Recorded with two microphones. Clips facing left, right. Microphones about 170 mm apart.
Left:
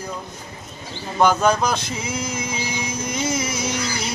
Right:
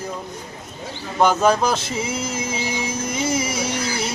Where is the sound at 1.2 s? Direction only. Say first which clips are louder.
Right 1 dB; 5° right (ahead or behind).